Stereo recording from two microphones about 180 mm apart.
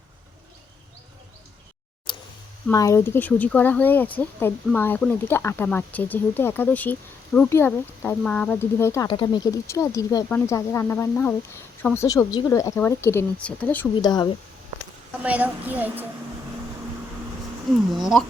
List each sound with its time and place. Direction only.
2.1 s a sound: 25° left (ahead or behind)
2.6 s speech: 15° left (ahead or behind)
14.0 s speech: 20° left (ahead or behind)
15.2 s a child's voice: 10° right (ahead or behind)
17.9 s speech: centre (ahead or behind)